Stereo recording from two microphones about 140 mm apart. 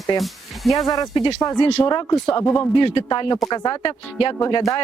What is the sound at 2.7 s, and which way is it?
A man's voice, 40° left (ahead or behind).